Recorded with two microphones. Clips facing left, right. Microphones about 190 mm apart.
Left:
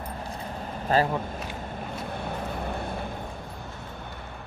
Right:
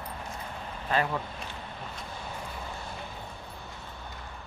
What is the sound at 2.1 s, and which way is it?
Vehicle, 60° left (ahead or behind).